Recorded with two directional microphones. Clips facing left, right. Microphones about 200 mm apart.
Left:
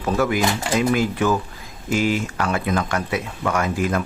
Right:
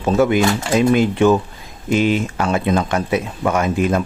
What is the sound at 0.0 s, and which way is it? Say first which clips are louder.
Speech: right 5 dB; 25° right (ahead or behind).